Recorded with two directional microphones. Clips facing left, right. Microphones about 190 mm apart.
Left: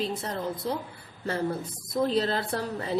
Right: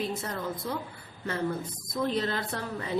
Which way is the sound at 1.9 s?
35° left (ahead or behind).